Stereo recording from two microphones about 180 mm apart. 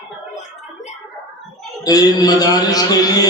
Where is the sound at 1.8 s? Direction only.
20° left (ahead or behind).